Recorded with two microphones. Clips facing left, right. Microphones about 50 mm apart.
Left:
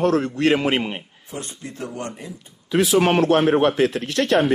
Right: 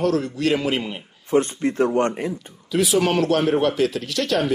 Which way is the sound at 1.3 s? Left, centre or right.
Right.